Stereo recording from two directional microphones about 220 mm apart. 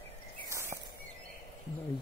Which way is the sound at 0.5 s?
10° right (ahead or behind).